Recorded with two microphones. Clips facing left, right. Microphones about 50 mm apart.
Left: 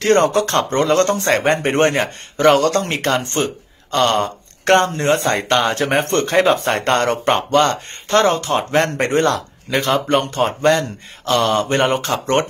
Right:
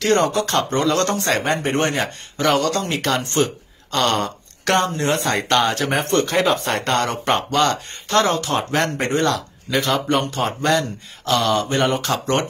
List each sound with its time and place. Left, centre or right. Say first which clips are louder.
0.2 s speech: left 4 dB; left
0.5 s speech: left 3 dB; left
1.4 s speech: left 5 dB; left
3.9 s speech: left 3 dB; centre
4.7 s speech: left 3 dB; left
5.0 s speech: left 4 dB; left
5.3 s speech: left 1 dB; centre
5.7 s speech: left 3 dB; left
6.3 s speech: left 4 dB; left
6.8 s speech: left 4 dB; left
7.2 s speech: left 3 dB; centre
8.5 s speech: left 4 dB; centre
8.8 s speech: left 3 dB; left
12.0 s speech: left 3 dB; left